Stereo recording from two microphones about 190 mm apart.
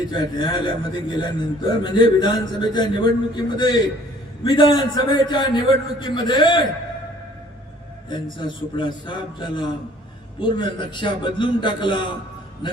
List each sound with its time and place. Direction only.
0.1 s a man's voice: 25° left (ahead or behind)
8.1 s a man's voice: 25° left (ahead or behind)